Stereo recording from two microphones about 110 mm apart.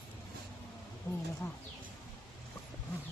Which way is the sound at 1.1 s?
25° left (ahead or behind).